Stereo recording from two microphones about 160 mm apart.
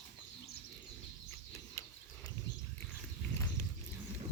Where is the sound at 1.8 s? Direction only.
20° left (ahead or behind).